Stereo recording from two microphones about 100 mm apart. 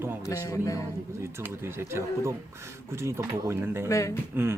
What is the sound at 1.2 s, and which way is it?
Speech, 25° right (ahead or behind).